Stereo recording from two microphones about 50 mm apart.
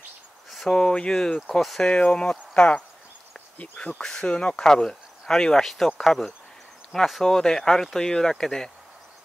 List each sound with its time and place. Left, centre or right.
0.5 s a sound: centre
0.7 s speech: centre
4.0 s speech: centre